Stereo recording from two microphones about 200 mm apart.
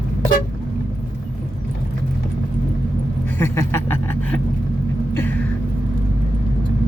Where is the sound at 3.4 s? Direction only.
10° left (ahead or behind).